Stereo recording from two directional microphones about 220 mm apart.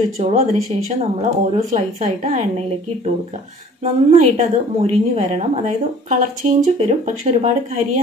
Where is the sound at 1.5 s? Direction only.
30° right (ahead or behind).